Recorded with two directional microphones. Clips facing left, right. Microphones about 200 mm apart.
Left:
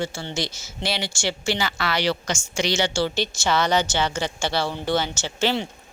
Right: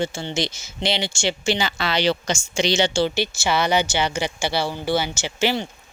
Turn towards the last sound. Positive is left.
turn(degrees=-10)  # may be behind; listen again after turning